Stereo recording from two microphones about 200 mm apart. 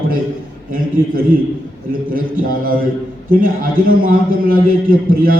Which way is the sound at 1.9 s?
45° right (ahead or behind).